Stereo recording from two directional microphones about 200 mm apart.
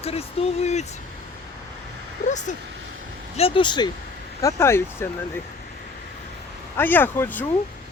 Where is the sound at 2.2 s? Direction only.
35° left (ahead or behind); by 5.4 s 10° left (ahead or behind).